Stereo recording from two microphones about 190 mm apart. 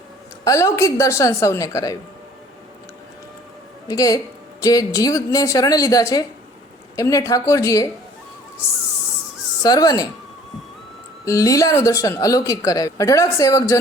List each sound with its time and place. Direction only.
0.4 s speech: 15° left (ahead or behind)
3.8 s a woman's voice: 20° left (ahead or behind)
9.6 s a woman's voice: 20° left (ahead or behind)
11.3 s speech: 15° left (ahead or behind)